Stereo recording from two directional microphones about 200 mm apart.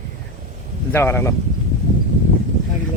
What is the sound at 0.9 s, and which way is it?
Speech, 10° left (ahead or behind).